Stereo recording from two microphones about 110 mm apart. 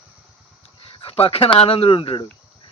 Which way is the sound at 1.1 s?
60° left (ahead or behind).